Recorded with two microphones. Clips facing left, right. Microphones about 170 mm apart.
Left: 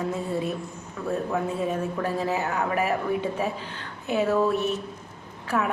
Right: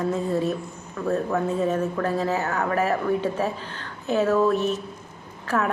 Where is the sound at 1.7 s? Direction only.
15° left (ahead or behind).